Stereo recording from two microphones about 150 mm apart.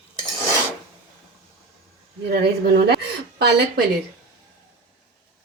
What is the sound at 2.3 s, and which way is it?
Speech, 90° right.